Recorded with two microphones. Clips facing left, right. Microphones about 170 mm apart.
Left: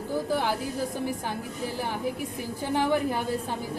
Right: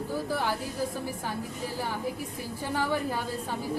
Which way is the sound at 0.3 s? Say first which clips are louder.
Left 4 dB; 15° left (ahead or behind).